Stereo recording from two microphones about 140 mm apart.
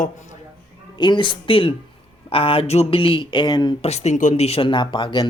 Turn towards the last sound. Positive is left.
turn(degrees=35)  # may be behind; listen again after turning